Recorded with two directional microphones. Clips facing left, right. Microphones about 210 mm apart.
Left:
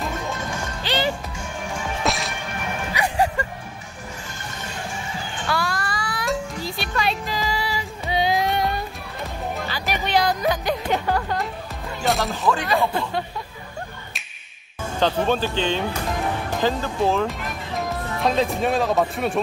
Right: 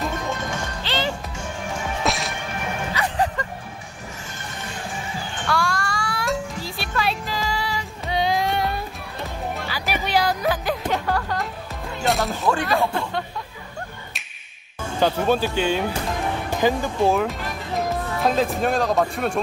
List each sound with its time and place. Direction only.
0.8 s music: 15° left (ahead or behind)
2.0 s whip: centre (ahead or behind)
2.9 s music: 10° left (ahead or behind)
5.5 s music: 5° left (ahead or behind)
12.6 s a sound: centre (ahead or behind)
15.0 s speech: 10° right (ahead or behind)